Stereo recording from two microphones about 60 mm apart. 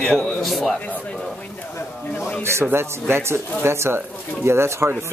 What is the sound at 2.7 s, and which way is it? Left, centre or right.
Speech, right.